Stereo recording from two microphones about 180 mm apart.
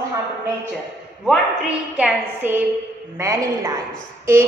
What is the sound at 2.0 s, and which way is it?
A woman's voice, 10° right (ahead or behind).